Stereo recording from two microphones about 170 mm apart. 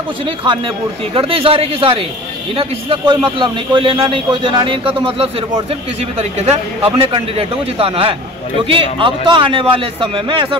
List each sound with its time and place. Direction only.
1.1 s a man's voice: 35° right (ahead or behind)